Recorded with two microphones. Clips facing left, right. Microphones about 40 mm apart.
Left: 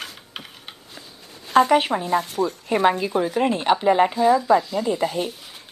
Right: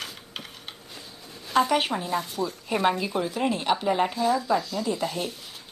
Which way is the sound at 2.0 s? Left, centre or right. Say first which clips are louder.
Left 6 dB; left.